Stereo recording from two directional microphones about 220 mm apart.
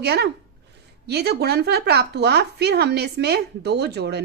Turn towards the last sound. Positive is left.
turn(degrees=-50)  # may be behind; listen again after turning